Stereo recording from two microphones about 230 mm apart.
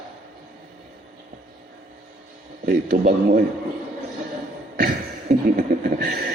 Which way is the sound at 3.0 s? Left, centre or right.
Right.